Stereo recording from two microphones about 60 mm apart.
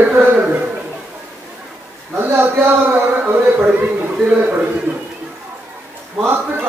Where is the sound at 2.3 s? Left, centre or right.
Right.